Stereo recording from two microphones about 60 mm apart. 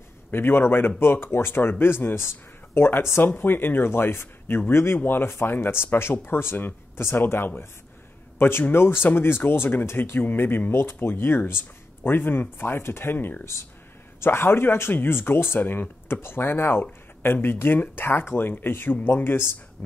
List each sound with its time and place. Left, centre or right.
0.3 s speech: left